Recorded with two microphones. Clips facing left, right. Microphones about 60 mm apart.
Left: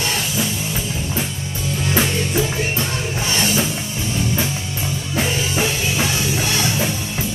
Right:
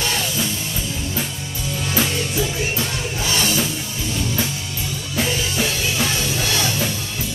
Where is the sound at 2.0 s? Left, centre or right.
Left.